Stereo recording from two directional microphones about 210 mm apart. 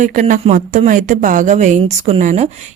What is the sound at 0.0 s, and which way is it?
A woman's voice, 35° right (ahead or behind).